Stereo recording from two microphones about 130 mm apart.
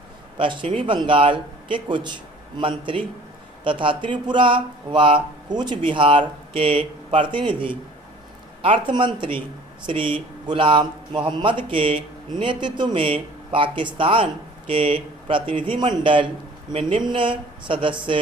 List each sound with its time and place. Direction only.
0.3 s a man's voice: 40° right (ahead or behind)